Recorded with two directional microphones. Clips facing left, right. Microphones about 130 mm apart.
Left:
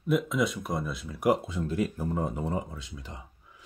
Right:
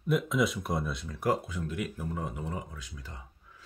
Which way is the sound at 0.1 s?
Centre (ahead or behind).